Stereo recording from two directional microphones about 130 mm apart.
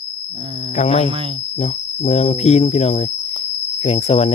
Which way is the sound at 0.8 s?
60° left (ahead or behind).